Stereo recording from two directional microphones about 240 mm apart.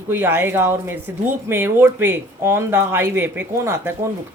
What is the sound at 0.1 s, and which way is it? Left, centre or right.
Speech, centre.